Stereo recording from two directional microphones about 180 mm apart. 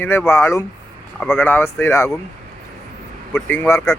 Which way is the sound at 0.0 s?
15° left (ahead or behind).